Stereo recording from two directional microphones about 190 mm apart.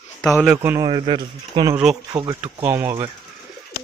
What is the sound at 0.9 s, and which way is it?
Speech, 25° right (ahead or behind).